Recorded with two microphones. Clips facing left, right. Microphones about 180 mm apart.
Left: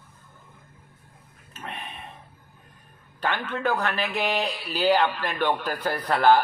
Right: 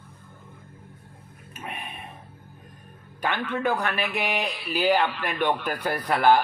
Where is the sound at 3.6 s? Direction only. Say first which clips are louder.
Even; 15° right (ahead or behind).